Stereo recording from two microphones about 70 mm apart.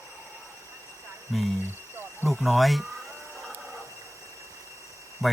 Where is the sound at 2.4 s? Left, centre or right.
Centre.